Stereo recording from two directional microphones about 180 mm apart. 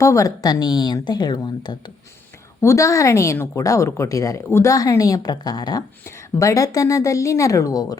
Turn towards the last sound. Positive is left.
turn(degrees=20)  # may be behind; listen again after turning